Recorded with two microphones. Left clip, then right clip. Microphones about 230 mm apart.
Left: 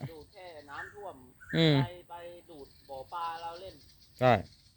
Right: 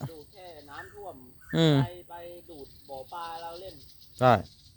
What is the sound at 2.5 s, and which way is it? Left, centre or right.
Cricket, right.